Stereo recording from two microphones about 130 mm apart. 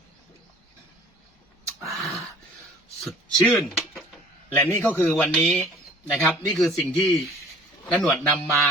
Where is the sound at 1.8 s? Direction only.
Centre (ahead or behind).